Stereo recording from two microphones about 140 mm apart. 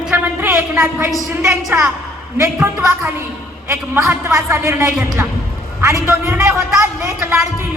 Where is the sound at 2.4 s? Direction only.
20° right (ahead or behind).